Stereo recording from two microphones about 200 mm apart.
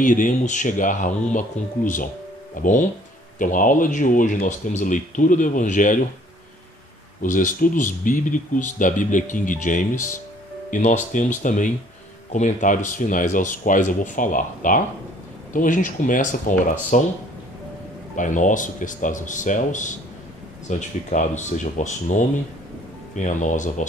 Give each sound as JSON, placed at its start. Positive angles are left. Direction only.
{"t": 0.0, "sound": "speech", "side_deg": 40}
{"t": 7.2, "sound": "speech", "side_deg": 40}
{"t": 18.1, "sound": "speech", "side_deg": 40}